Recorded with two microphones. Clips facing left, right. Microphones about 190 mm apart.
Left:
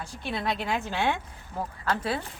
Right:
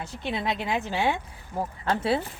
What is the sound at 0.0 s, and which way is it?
Speech, 20° right (ahead or behind).